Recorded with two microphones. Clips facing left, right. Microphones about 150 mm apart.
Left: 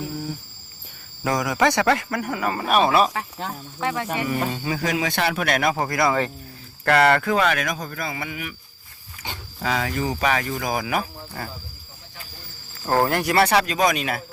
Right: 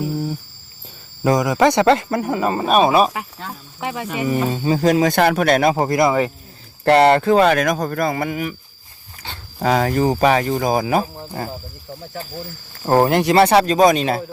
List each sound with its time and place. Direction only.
1.2 s speech: 20° right (ahead or behind)
4.5 s speech: 25° right (ahead or behind)
6.1 s speech: 10° right (ahead or behind)
6.8 s speech: 30° right (ahead or behind)
9.6 s speech: 40° right (ahead or behind)
12.8 s speech: 20° right (ahead or behind)